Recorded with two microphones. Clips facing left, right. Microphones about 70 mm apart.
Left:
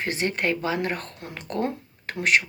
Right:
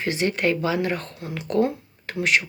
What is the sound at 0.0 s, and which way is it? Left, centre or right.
Speech, left.